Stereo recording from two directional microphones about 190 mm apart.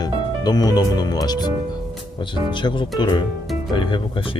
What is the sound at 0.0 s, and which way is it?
Speech, 20° left (ahead or behind).